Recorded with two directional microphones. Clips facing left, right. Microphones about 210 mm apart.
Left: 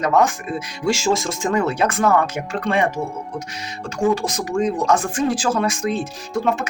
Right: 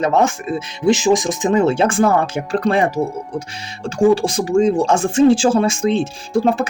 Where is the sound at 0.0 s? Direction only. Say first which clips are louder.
Right 2 dB; 25° right (ahead or behind).